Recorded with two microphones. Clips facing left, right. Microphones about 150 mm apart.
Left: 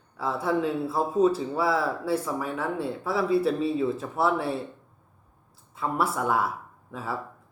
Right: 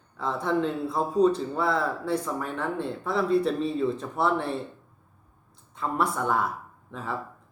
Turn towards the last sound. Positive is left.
turn(degrees=5)  # may be behind; listen again after turning